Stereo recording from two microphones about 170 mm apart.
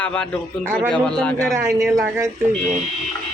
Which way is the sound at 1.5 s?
15° right (ahead or behind).